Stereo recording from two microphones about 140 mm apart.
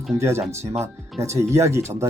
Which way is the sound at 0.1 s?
20° right (ahead or behind).